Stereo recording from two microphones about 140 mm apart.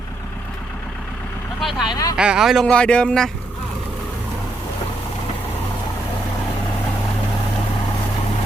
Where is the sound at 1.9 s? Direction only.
25° left (ahead or behind).